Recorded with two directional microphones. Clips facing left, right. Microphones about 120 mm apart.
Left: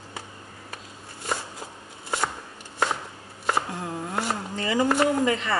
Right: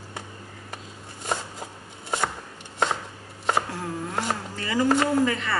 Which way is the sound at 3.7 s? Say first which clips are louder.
Even; 20° left (ahead or behind).